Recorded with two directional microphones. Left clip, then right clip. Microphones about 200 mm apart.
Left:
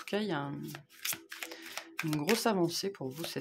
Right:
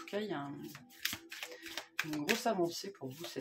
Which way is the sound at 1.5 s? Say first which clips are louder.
Left 2 dB; 30° left (ahead or behind).